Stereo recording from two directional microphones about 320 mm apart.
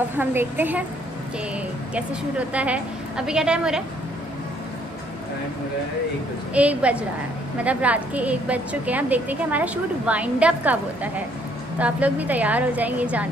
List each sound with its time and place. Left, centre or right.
0.2 s a woman's voice: centre
2.0 s a woman's voice: centre
6.5 s a woman's voice: centre